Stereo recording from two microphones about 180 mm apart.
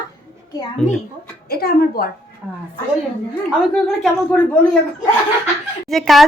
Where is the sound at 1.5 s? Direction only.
60° left (ahead or behind).